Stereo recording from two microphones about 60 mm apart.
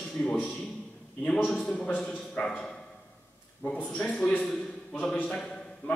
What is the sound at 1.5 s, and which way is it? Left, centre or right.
A man's voice, left.